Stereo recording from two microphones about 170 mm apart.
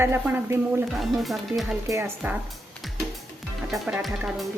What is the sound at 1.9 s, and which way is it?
Speech, 15° right (ahead or behind).